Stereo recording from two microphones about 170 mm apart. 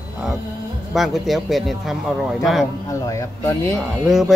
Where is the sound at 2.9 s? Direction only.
20° left (ahead or behind).